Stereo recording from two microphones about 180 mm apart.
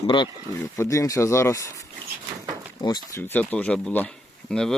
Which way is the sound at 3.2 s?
10° left (ahead or behind).